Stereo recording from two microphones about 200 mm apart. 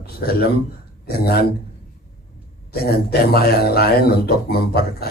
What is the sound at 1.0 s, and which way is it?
Speech, 50° left (ahead or behind).